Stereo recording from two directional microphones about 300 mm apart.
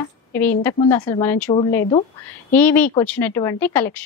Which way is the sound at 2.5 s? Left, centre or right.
Centre.